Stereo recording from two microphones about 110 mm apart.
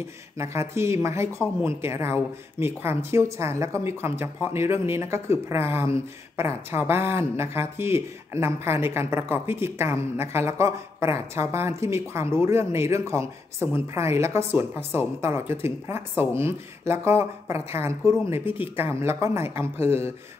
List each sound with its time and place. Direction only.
0.4 s speech: 25° right (ahead or behind)